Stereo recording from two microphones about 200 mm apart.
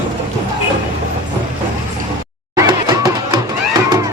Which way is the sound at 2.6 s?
20° right (ahead or behind).